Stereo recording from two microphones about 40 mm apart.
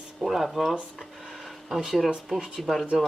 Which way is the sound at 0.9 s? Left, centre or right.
Centre.